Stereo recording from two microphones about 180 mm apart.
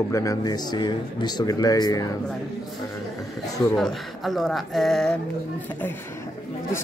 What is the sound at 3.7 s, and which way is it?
Speech, centre (ahead or behind).